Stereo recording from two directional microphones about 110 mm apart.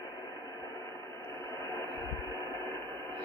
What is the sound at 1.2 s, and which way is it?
Radio, 25° left (ahead or behind).